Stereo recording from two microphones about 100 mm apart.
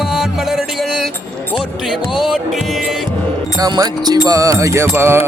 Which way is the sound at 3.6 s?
40° right (ahead or behind).